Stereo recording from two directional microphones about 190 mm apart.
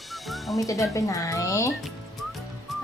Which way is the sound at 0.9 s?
15° left (ahead or behind).